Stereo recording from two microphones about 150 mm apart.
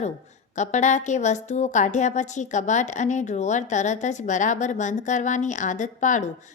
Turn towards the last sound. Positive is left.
turn(degrees=55)  # may be behind; listen again after turning